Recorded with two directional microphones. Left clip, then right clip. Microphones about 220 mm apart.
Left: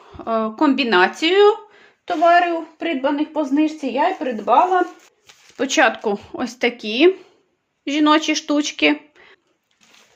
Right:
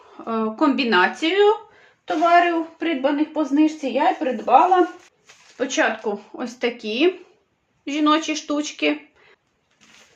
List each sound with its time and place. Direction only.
0.1 s speech: 35° left (ahead or behind); by 4.5 s 50° left (ahead or behind)
5.5 s speech: 50° left (ahead or behind); by 9.3 s 35° left (ahead or behind)